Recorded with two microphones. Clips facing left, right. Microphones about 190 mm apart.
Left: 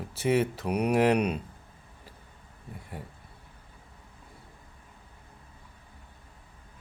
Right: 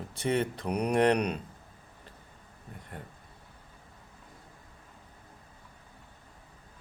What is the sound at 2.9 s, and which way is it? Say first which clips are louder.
Speech: left 2 dB; 5° left (ahead or behind).